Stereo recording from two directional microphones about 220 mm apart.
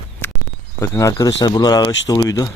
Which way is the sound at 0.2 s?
10° left (ahead or behind).